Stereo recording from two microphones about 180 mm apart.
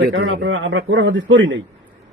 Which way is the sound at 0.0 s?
60° right (ahead or behind).